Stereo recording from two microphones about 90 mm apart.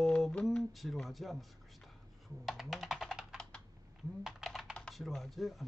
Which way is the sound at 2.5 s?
Centre (ahead or behind).